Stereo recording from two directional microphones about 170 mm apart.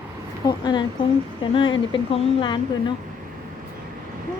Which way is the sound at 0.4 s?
25° left (ahead or behind).